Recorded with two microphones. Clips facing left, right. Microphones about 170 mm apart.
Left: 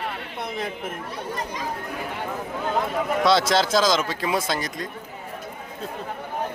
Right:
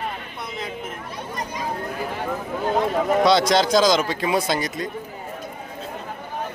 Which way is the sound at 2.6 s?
35° right (ahead or behind).